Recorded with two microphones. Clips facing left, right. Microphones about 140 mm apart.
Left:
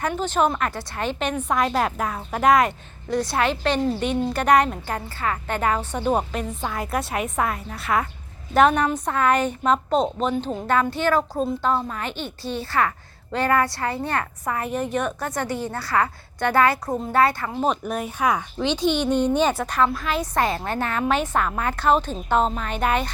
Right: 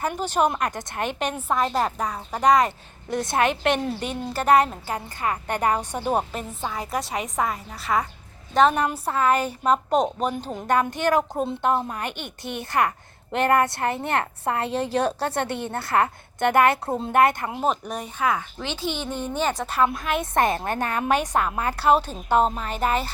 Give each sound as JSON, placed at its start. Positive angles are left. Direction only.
{"t": 0.0, "sound": "a woman's voice", "side_deg": -10}
{"t": 1.2, "sound": "a woman's voice", "side_deg": -5}
{"t": 3.1, "sound": "a woman's voice", "side_deg": -20}
{"t": 4.3, "sound": "a woman's voice", "side_deg": -5}
{"t": 17.6, "sound": "a woman's voice", "side_deg": 0}
{"t": 18.2, "sound": "speech", "side_deg": 15}
{"t": 19.5, "sound": "a woman's voice", "side_deg": -5}
{"t": 20.3, "sound": "a woman's voice", "side_deg": -20}